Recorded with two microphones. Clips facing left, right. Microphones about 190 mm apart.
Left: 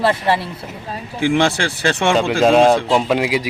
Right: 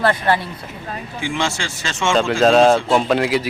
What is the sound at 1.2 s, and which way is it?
Speech, 60° left (ahead or behind).